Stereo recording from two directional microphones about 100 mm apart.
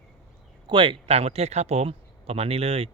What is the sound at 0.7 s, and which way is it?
Speech, 55° right (ahead or behind).